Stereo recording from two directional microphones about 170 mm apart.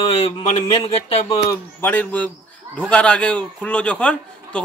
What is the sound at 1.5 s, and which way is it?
A man's voice, 10° left (ahead or behind).